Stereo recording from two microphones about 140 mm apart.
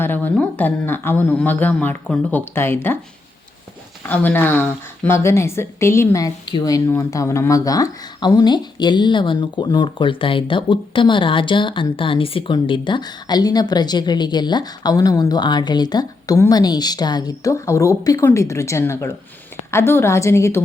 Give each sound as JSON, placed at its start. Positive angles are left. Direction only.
{"t": 0.0, "sound": "speech", "side_deg": 15}
{"t": 4.1, "sound": "a woman's voice", "side_deg": 15}